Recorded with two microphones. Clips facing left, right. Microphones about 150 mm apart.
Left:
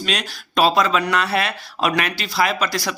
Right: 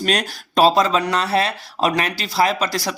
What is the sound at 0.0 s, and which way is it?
Speech, 40° right (ahead or behind).